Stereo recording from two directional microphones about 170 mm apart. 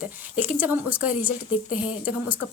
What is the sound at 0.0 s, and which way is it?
Speech, 10° right (ahead or behind).